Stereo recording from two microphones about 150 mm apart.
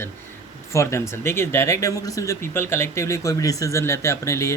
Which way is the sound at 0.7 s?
20° left (ahead or behind).